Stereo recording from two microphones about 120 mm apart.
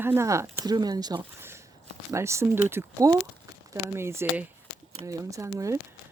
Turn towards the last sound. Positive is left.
turn(degrees=-25)  # may be behind; listen again after turning